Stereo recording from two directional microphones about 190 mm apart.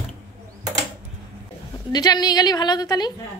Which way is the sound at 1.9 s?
20° left (ahead or behind).